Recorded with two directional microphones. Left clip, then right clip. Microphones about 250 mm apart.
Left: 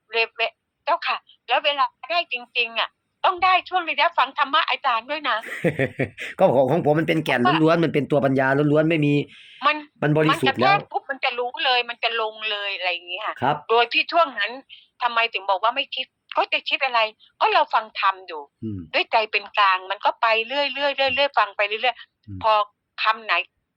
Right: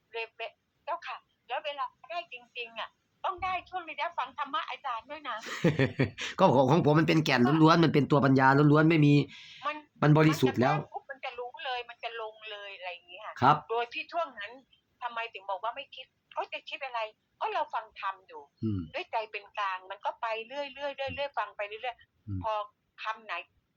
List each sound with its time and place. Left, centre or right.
0.1 s telephone: left
5.5 s speech: centre
5.8 s speech: right
9.6 s a sound: left
10.0 s speech: right
10.4 s a sound: left
13.7 s a woman's voice: left